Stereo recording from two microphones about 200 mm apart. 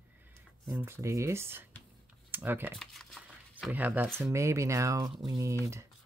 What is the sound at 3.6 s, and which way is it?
Speech, 10° right (ahead or behind).